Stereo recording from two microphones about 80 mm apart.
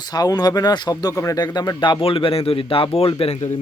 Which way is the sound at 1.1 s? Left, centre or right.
Left.